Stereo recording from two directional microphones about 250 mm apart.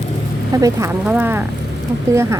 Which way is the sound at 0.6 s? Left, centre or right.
Centre.